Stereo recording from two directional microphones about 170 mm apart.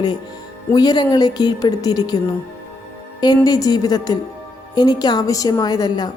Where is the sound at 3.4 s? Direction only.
20° left (ahead or behind).